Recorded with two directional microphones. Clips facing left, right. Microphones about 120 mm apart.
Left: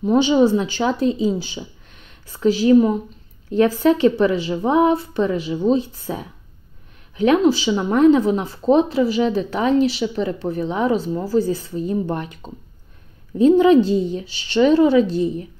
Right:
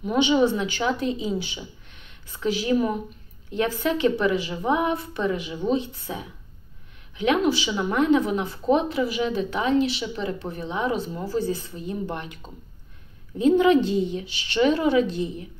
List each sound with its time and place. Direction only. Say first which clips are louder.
0.0 s speech: left 5 dB; 35° left (ahead or behind)